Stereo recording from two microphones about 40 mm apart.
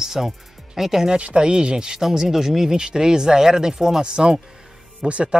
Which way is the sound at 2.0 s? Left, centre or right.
Centre.